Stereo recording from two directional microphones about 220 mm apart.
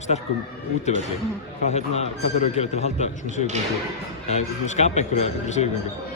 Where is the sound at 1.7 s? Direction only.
30° left (ahead or behind).